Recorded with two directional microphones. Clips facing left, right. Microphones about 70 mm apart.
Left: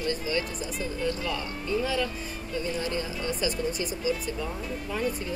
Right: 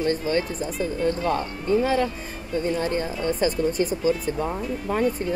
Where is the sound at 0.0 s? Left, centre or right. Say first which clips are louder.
Right 6 dB; right.